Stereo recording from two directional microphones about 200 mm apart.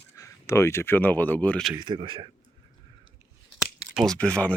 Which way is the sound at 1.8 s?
25° right (ahead or behind).